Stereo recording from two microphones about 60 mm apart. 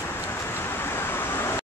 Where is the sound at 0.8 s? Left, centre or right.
Left.